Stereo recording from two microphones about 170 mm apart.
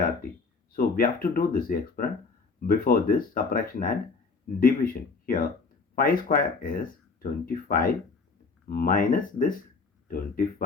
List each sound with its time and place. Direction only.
0.8 s speech: 60° left (ahead or behind)